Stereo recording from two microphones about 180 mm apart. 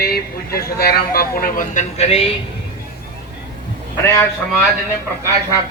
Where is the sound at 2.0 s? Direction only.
35° left (ahead or behind).